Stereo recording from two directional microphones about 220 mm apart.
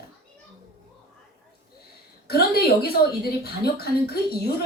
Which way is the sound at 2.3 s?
45° left (ahead or behind).